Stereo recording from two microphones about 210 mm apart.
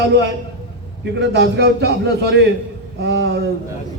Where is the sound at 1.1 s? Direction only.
50° right (ahead or behind).